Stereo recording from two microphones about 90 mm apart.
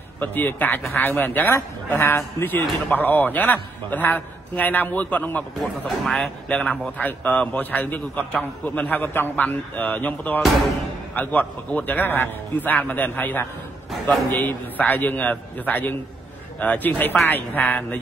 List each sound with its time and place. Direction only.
0.2 s a man's voice: 20° left (ahead or behind)
5.6 s a man's voice: 5° left (ahead or behind)